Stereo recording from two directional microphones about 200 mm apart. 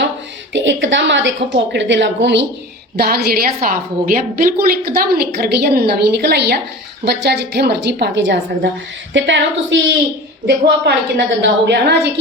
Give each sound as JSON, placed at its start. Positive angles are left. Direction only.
{"t": 0.5, "sound": "a woman's voice", "side_deg": -65}
{"t": 3.0, "sound": "a woman's voice", "side_deg": -50}